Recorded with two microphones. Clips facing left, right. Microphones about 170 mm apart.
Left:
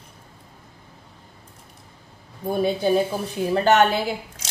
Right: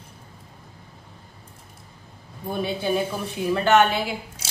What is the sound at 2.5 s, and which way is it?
A woman's voice, 40° left (ahead or behind).